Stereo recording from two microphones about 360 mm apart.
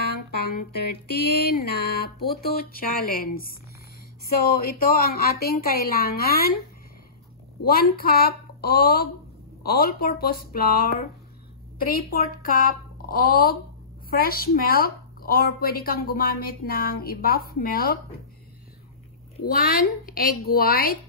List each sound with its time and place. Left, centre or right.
1.1 s speech: left
4.6 s speech: left
7.6 s speech: left
19.4 s speech: left